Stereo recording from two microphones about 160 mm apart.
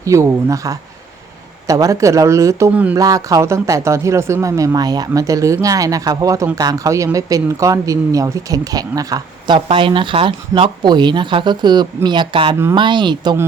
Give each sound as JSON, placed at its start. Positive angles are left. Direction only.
{"t": 0.0, "sound": "speech", "side_deg": -20}